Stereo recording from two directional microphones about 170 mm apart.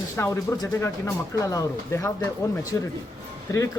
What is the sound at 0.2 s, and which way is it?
Speech, 20° left (ahead or behind).